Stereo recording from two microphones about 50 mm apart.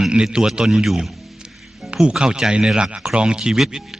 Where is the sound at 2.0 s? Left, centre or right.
Centre.